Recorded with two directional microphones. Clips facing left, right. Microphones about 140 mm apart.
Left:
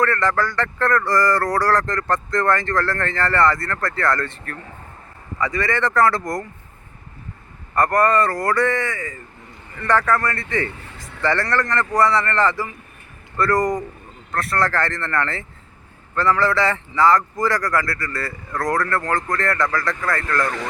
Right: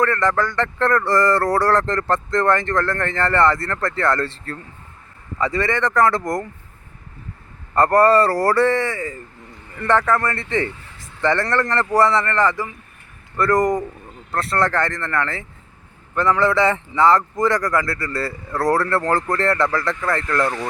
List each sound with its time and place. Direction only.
0.0 s speech: 20° right (ahead or behind)
7.8 s speech: 30° right (ahead or behind)
12.2 s speech: 15° right (ahead or behind)